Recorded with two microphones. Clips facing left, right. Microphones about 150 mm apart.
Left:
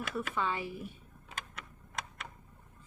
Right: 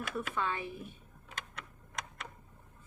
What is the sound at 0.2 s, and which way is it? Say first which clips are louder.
Speech: left 1 dB; 5° left (ahead or behind).